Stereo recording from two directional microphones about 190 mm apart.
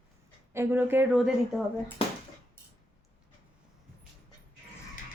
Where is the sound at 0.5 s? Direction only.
10° right (ahead or behind).